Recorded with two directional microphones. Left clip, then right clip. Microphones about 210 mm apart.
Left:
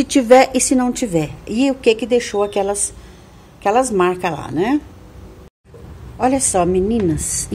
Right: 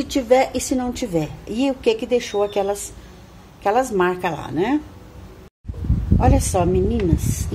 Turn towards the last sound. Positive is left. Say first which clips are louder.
# left 3 dB
turn(degrees=15)  # may be behind; listen again after turning